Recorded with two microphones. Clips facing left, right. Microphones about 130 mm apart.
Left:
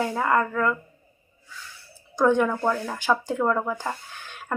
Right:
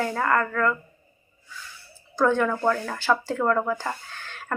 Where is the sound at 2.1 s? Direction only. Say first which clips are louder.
Left 1 dB; 15° left (ahead or behind).